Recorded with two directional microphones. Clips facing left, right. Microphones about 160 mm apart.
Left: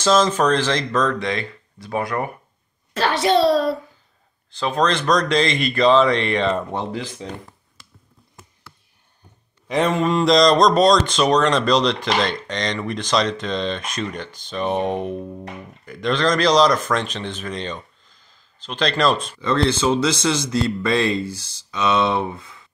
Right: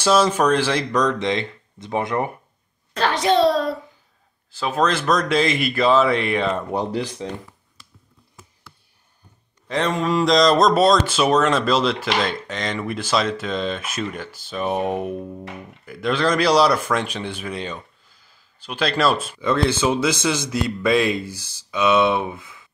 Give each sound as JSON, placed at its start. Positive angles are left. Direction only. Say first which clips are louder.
{"t": 0.0, "sound": "a man's voice", "louder": "even", "side_deg": -10}
{"t": 2.9, "sound": "a child's voice", "louder": "left 1 dB", "side_deg": 5}
{"t": 9.8, "sound": "a man's voice", "louder": "left 1 dB", "side_deg": 0}